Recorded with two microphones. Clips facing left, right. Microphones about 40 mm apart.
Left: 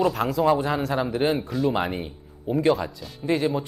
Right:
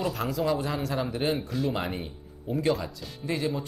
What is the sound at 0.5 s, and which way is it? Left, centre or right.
Speech, left.